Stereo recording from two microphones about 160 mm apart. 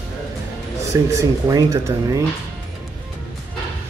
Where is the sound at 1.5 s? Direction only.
20° right (ahead or behind).